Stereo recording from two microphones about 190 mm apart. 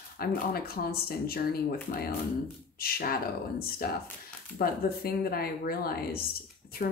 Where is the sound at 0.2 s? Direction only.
55° left (ahead or behind).